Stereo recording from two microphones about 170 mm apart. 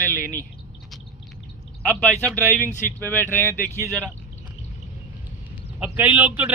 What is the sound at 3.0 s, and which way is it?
Speech, 10° left (ahead or behind).